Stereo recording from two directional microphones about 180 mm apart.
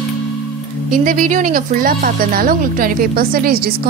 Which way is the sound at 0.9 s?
50° right (ahead or behind).